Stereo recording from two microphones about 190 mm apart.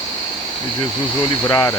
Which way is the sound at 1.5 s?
20° left (ahead or behind).